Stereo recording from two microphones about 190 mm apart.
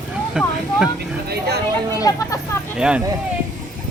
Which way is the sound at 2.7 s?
5° right (ahead or behind).